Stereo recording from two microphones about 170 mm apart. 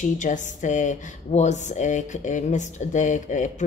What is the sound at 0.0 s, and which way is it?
Speech, 45° left (ahead or behind).